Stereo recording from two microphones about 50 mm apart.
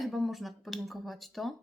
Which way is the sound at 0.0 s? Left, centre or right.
Centre.